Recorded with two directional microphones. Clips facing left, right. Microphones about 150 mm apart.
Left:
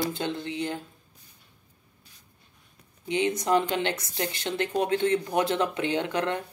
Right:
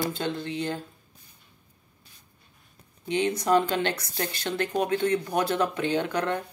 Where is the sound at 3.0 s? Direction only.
20° left (ahead or behind).